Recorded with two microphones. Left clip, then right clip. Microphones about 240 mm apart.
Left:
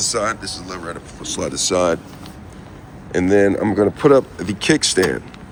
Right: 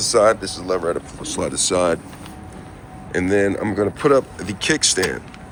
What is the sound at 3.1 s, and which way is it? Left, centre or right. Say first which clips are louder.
Speech: left 3 dB; left.